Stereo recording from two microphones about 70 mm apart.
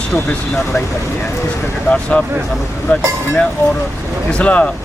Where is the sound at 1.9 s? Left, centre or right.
Centre.